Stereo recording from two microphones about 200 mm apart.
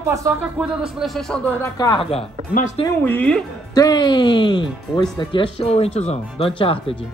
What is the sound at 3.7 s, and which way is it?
Speech, 20° left (ahead or behind).